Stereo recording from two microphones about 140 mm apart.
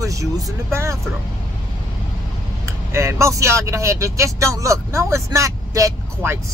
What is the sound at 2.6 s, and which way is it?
Speech, 20° right (ahead or behind).